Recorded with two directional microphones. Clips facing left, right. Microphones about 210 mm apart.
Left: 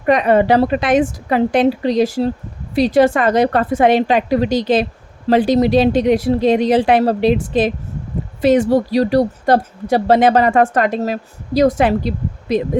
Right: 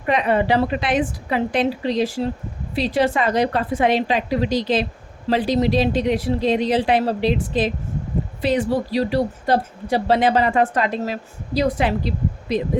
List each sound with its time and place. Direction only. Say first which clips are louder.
0.0 s speech: left 6 dB; 50° left (ahead or behind)